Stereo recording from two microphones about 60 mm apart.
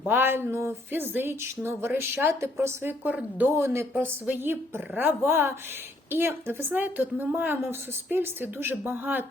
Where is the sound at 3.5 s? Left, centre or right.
Right.